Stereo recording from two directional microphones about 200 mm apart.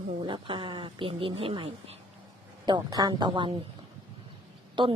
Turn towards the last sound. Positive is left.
turn(degrees=-25)  # may be behind; listen again after turning